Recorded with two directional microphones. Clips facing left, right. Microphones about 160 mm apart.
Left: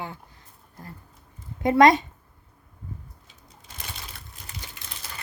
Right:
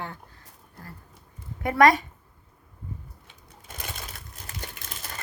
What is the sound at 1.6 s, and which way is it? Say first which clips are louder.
Speech: left 3 dB; 20° left (ahead or behind).